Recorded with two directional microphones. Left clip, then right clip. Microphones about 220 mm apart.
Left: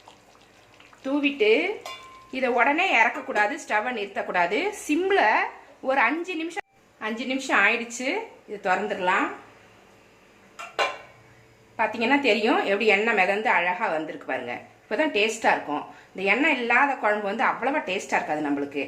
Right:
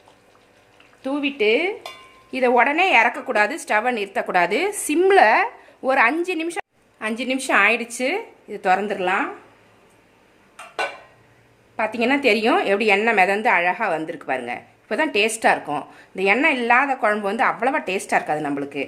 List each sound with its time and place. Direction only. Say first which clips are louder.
1.0 s a woman's voice: right 1 dB; 50° right (ahead or behind)
11.8 s a woman's voice: right 3 dB; 55° right (ahead or behind)